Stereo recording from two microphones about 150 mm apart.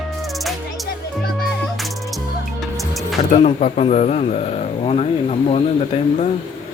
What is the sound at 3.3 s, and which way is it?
Speech, 45° left (ahead or behind).